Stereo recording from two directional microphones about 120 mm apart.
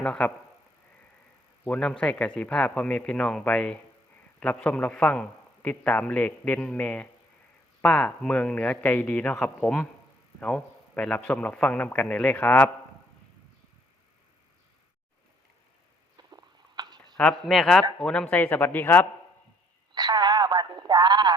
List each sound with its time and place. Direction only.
0.0 s a man's voice: 10° left (ahead or behind)
1.6 s a man's voice: 10° left (ahead or behind)
16.1 s a sound: 35° right (ahead or behind)
17.2 s a man's voice: 5° left (ahead or behind)
19.9 s radio: 35° right (ahead or behind)